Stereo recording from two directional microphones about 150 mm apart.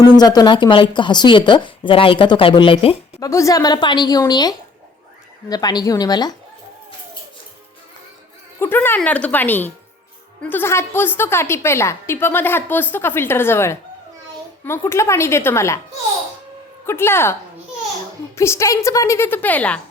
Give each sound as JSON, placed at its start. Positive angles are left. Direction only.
{"t": 0.0, "sound": "speech", "side_deg": 25}
{"t": 3.2, "sound": "a woman's voice", "side_deg": 20}
{"t": 8.5, "sound": "a woman's voice", "side_deg": 15}
{"t": 16.8, "sound": "a woman's voice", "side_deg": 15}
{"t": 18.3, "sound": "a woman's voice", "side_deg": 20}